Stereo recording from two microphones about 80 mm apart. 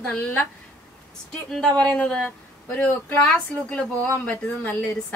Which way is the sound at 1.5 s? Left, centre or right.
Centre.